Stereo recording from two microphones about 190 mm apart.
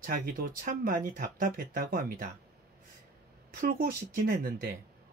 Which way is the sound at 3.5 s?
45° right (ahead or behind).